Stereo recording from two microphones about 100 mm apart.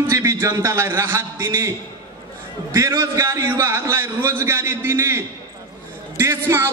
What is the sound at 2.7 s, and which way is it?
A man's voice, 30° right (ahead or behind).